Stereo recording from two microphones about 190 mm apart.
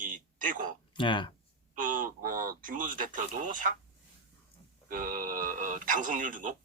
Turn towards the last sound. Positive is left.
turn(degrees=-45)  # may be behind; listen again after turning